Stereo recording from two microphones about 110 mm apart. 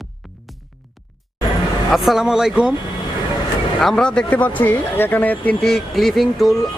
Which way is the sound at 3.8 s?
5° left (ahead or behind).